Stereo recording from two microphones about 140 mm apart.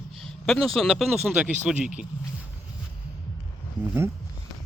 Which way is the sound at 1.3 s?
10° right (ahead or behind).